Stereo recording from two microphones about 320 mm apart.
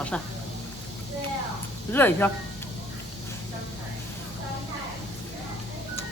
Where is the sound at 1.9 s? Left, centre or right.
Centre.